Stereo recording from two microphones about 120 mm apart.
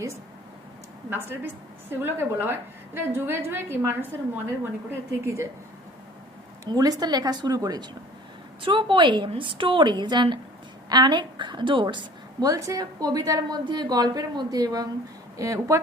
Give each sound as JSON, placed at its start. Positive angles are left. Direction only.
{"t": 1.1, "sound": "a woman's voice", "side_deg": -20}
{"t": 6.7, "sound": "a woman's voice", "side_deg": -30}
{"t": 8.6, "sound": "a woman's voice", "side_deg": -45}
{"t": 12.5, "sound": "a woman's voice", "side_deg": -30}